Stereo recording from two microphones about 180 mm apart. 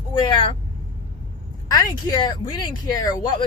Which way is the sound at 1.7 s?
20° left (ahead or behind).